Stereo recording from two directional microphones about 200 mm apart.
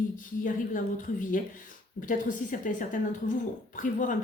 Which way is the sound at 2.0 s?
40° left (ahead or behind).